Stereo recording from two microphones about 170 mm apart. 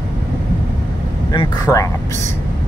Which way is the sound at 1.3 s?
20° left (ahead or behind).